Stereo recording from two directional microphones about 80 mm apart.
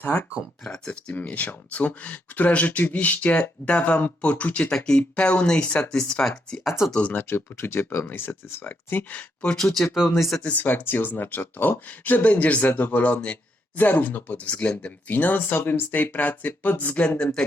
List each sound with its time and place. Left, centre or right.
0.0 s speech: left
0.6 s speech: centre
1.1 s speech: left
6.7 s speech: centre
6.9 s speech: centre
10.4 s speech: centre